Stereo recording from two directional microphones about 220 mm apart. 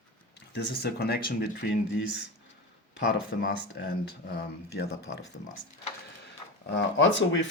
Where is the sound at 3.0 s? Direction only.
50° left (ahead or behind).